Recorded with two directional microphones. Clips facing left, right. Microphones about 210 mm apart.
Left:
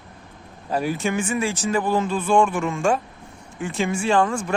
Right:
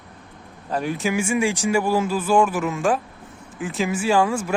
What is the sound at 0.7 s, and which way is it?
A man's voice, 5° left (ahead or behind).